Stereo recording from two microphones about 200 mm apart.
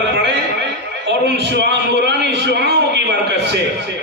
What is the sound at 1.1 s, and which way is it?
A man's voice, 60° right (ahead or behind).